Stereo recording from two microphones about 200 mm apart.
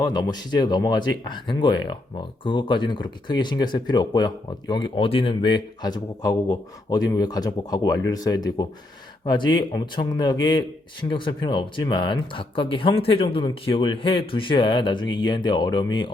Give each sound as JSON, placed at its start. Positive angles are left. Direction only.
{"t": 0.0, "sound": "speech", "side_deg": 20}